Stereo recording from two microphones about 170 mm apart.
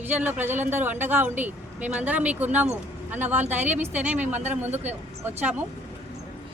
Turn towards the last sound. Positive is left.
turn(degrees=-10)  # may be behind; listen again after turning